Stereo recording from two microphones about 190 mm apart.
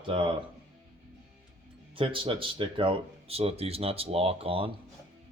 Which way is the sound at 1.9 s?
25° right (ahead or behind).